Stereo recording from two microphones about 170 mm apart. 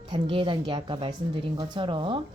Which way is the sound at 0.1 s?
30° right (ahead or behind).